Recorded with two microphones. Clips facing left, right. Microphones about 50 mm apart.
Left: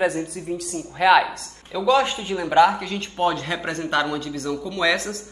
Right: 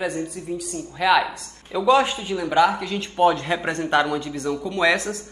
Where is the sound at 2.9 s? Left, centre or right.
Centre.